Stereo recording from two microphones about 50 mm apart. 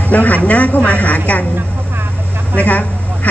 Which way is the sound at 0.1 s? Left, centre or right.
Left.